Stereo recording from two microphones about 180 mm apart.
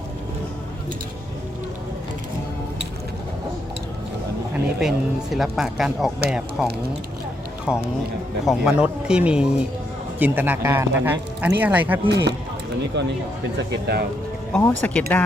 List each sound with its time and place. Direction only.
4.8 s a man's voice: centre (ahead or behind)
12.0 s speech: 70° right (ahead or behind)
13.6 s speech: 65° right (ahead or behind)
14.5 s speech: 10° left (ahead or behind)